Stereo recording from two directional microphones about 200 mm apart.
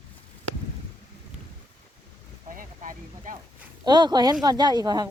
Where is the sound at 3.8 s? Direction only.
20° right (ahead or behind).